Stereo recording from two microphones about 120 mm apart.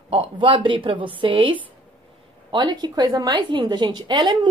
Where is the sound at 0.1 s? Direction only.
45° right (ahead or behind).